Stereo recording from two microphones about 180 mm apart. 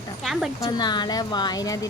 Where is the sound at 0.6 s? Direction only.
25° left (ahead or behind).